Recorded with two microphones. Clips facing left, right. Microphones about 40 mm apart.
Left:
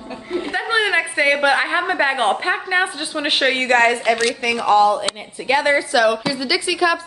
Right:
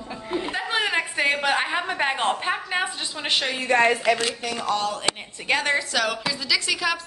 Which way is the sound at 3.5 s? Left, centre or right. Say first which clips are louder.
Left 3 dB; left.